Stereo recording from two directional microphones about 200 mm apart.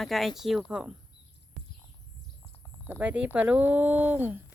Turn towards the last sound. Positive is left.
turn(degrees=-10)  # may be behind; listen again after turning